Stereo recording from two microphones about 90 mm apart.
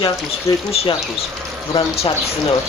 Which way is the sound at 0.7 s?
90° left.